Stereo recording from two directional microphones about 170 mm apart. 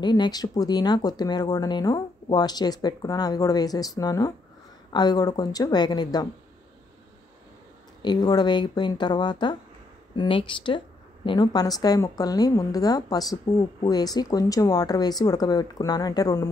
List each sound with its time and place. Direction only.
0.0 s speech: 25° left (ahead or behind)
8.0 s speech: 25° left (ahead or behind)